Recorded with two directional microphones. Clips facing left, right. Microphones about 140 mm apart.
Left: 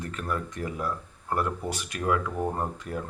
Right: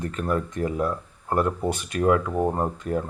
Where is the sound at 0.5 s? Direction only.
30° right (ahead or behind).